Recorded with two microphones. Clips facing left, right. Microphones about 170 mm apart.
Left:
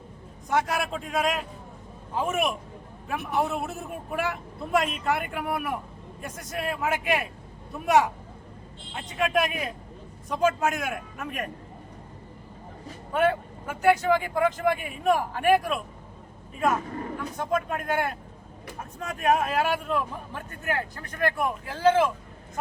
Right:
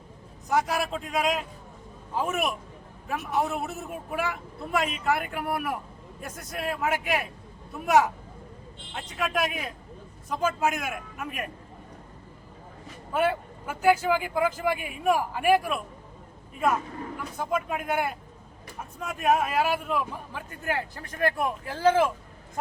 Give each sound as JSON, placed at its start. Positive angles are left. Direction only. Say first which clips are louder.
{"t": 0.4, "sound": "speech", "louder": "even", "side_deg": 0}
{"t": 13.1, "sound": "speech", "louder": "left 2 dB", "side_deg": -5}
{"t": 17.3, "sound": "speech", "louder": "left 1 dB", "side_deg": -5}
{"t": 21.2, "sound": "speech", "louder": "even", "side_deg": -30}